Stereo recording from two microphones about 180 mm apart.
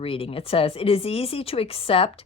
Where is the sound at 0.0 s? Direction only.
30° left (ahead or behind).